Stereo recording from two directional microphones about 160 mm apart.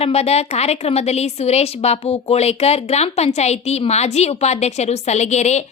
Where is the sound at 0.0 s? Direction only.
40° left (ahead or behind).